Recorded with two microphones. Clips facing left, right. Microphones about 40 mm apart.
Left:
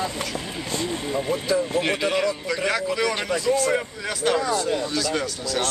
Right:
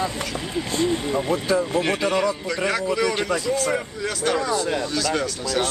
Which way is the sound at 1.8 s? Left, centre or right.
Centre.